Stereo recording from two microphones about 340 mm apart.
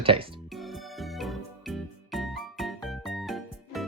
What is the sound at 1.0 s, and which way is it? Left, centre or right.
Music, centre.